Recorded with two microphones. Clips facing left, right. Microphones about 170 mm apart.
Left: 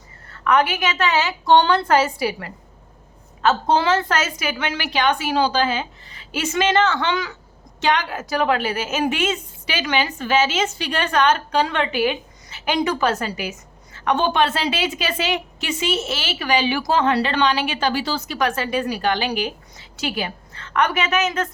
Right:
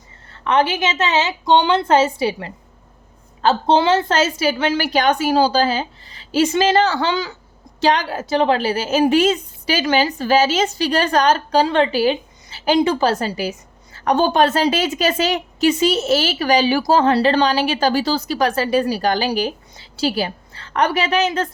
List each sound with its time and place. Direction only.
0.3 s a woman's voice: 25° right (ahead or behind)